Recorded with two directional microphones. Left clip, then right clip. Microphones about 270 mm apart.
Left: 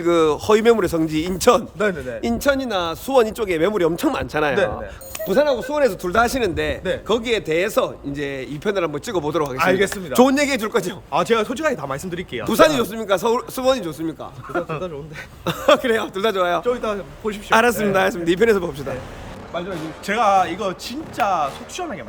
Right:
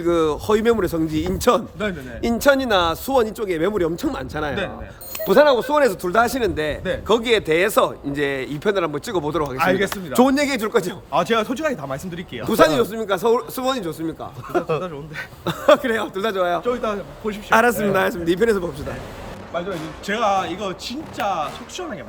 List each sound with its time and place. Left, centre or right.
0.0 s speech: centre
5.2 s speech: centre
14.5 s speech: right
15.4 s speech: centre
20.1 s speech: centre